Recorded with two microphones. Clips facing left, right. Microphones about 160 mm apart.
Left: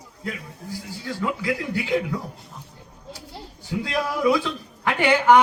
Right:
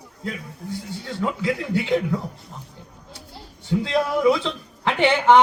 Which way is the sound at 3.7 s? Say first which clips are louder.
Right 4 dB; 25° right (ahead or behind).